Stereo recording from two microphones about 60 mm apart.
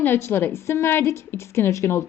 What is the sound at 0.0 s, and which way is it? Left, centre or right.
A woman's voice, left.